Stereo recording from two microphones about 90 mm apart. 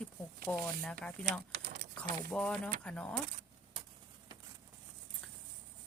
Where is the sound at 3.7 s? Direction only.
90° right.